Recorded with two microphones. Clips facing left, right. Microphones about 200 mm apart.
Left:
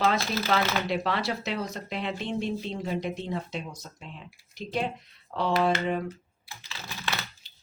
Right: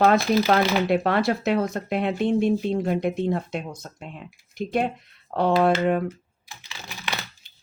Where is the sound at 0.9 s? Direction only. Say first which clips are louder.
Right 7 dB; 55° right (ahead or behind).